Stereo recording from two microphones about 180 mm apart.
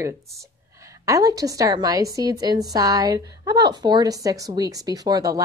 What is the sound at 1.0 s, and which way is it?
Speech, 20° right (ahead or behind).